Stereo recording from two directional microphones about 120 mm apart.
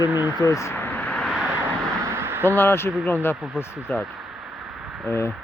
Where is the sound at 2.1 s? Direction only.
20° right (ahead or behind).